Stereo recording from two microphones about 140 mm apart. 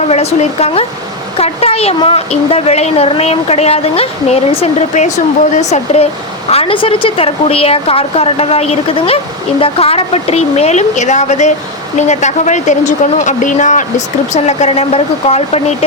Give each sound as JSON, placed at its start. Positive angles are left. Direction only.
{"t": 0.1, "sound": "a woman's voice", "side_deg": 50}
{"t": 6.5, "sound": "a woman's voice", "side_deg": 40}